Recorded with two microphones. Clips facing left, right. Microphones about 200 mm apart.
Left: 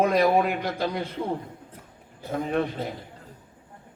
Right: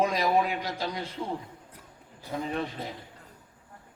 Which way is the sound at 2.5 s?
55° left (ahead or behind).